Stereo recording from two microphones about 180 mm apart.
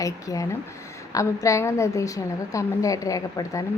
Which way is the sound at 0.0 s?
20° left (ahead or behind).